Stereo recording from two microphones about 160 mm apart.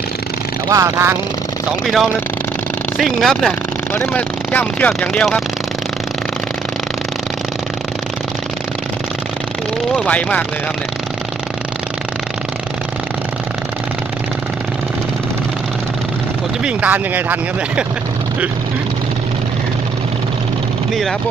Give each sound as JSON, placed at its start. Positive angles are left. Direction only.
{"t": 0.7, "sound": "speech", "side_deg": -20}
{"t": 3.0, "sound": "speech", "side_deg": 0}
{"t": 9.9, "sound": "speech", "side_deg": 10}
{"t": 16.6, "sound": "speech", "side_deg": -10}